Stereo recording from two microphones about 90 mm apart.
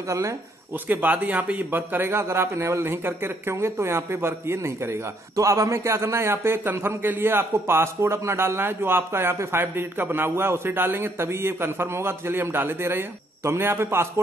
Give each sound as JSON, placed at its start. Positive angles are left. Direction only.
{"t": 0.8, "sound": "a man's voice", "side_deg": -20}